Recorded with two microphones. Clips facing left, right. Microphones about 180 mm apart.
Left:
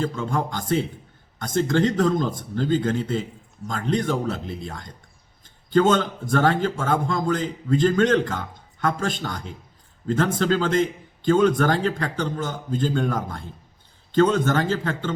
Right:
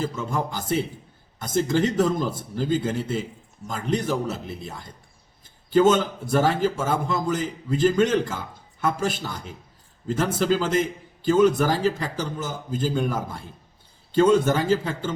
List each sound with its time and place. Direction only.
0.0 s a man's voice: 5° right (ahead or behind)